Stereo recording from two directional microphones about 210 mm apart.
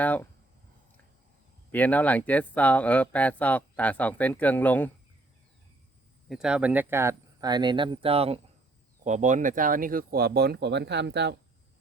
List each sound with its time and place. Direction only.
0.0 s speech: 10° left (ahead or behind)
1.7 s speech: 5° left (ahead or behind)
6.2 s speech: centre (ahead or behind); by 11.3 s 55° right (ahead or behind)